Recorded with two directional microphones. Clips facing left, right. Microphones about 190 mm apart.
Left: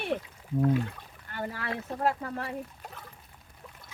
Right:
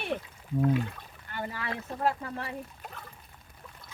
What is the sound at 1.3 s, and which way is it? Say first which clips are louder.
Speech: left 1 dB; 45° left (ahead or behind).